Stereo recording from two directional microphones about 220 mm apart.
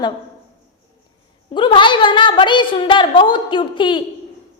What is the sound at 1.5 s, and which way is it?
A woman's voice, 20° left (ahead or behind).